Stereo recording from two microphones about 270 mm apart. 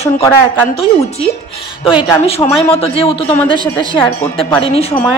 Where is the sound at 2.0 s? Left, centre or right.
Left.